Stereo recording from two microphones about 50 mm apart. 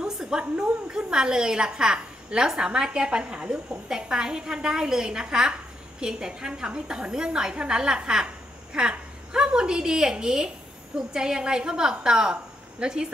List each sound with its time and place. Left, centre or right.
0.0 s a woman's voice: centre